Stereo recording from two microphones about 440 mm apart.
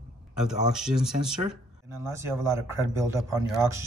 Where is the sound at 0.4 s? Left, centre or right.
Centre.